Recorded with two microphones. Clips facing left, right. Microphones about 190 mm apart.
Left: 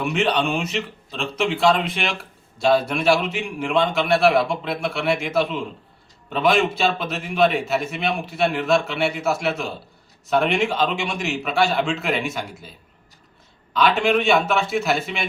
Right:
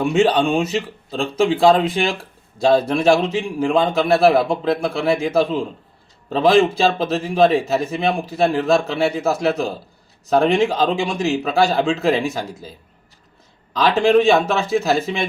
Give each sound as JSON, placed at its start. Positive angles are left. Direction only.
{"t": 0.0, "sound": "speech", "side_deg": -30}
{"t": 13.7, "sound": "speech", "side_deg": -35}